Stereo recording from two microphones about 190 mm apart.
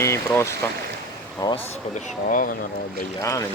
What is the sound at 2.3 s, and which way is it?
Speech, 45° left (ahead or behind).